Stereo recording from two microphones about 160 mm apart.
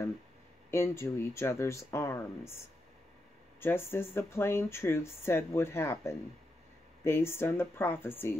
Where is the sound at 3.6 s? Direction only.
15° left (ahead or behind).